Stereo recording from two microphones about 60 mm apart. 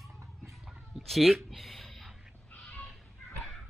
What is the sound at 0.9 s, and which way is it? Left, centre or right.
Cat, centre.